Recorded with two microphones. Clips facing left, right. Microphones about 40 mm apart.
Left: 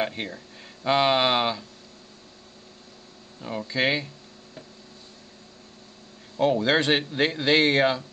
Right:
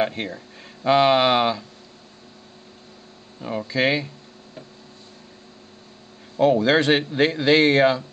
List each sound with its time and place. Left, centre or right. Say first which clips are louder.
0.0 s a man's voice: right 5 dB; centre
3.3 s a man's voice: right 3 dB; centre
6.3 s a man's voice: right 4 dB; centre